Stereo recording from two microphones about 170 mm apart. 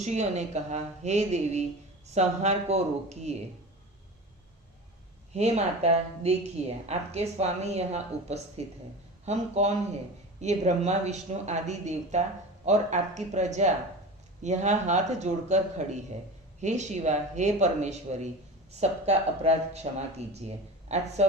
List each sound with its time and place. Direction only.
0.0 s a woman's voice: 40° right (ahead or behind)
5.3 s a woman's voice: 40° right (ahead or behind)